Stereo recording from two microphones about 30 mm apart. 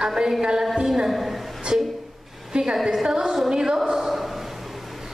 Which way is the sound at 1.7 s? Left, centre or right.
Right.